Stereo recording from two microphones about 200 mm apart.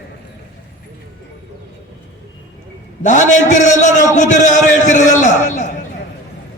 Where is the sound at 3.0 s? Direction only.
40° left (ahead or behind).